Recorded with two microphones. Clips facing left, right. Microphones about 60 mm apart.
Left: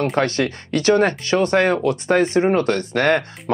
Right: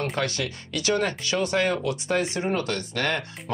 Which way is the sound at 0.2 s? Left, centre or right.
Left.